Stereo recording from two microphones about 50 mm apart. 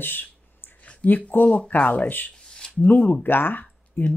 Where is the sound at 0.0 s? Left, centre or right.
Left.